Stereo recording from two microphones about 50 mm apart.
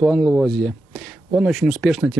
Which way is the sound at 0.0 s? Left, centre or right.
Centre.